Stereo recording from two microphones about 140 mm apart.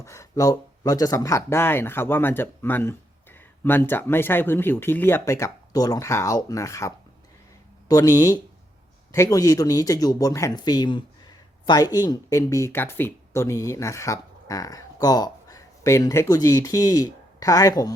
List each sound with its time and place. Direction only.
0.0 s speech: 20° left (ahead or behind)